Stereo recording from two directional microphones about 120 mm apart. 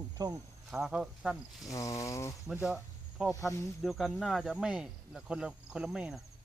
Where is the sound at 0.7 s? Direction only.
10° right (ahead or behind).